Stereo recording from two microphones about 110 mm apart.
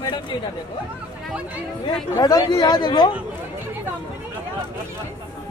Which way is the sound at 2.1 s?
35° left (ahead or behind).